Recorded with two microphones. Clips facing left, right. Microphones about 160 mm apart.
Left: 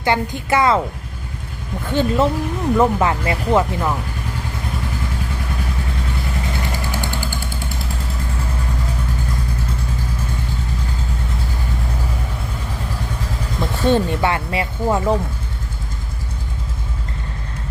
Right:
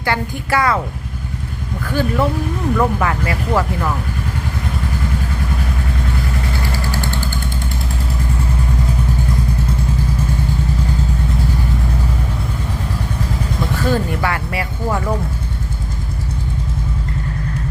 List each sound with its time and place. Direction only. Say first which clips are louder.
0.0 s speech: left 2 dB; 20° left (ahead or behind)
1.8 s speech: left 1 dB; 25° left (ahead or behind)
6.9 s vehicle: right 2 dB; 15° left (ahead or behind)
13.7 s speech: left 3 dB; 25° left (ahead or behind)